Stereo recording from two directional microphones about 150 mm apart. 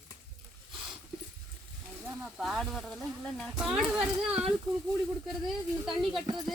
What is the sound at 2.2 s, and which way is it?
Speech, centre (ahead or behind).